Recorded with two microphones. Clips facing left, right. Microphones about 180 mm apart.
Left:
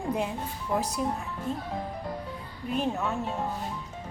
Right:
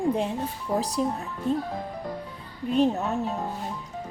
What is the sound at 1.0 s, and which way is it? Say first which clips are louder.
Speech: right 6 dB; 30° right (ahead or behind).